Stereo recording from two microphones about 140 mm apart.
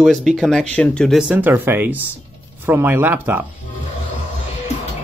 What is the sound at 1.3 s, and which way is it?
Speech, 15° right (ahead or behind).